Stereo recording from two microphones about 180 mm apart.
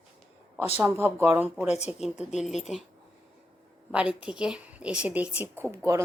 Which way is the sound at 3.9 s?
5° right (ahead or behind).